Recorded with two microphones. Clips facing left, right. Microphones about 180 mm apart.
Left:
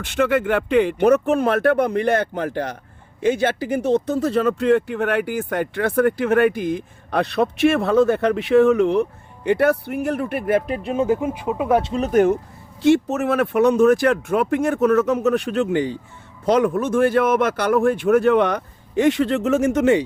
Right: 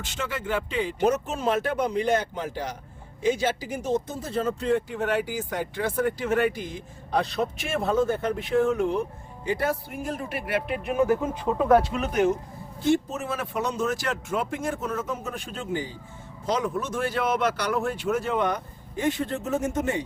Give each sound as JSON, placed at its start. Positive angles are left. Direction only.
{"t": 0.0, "sound": "speech", "side_deg": 60}
{"t": 10.8, "sound": "speech", "side_deg": 25}
{"t": 11.9, "sound": "speech", "side_deg": 35}
{"t": 12.1, "sound": "speech", "side_deg": 55}
{"t": 12.8, "sound": "speech", "side_deg": 75}
{"t": 16.5, "sound": "speech", "side_deg": 60}